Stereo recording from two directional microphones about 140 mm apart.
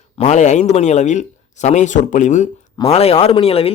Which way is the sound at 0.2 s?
60° left (ahead or behind).